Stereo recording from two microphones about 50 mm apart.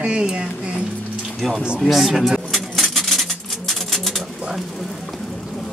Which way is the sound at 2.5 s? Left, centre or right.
Centre.